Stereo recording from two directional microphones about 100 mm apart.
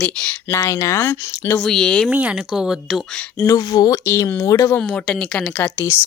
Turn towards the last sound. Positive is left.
turn(degrees=20)  # may be behind; listen again after turning